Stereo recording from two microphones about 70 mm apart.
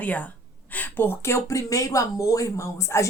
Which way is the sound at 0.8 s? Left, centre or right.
Left.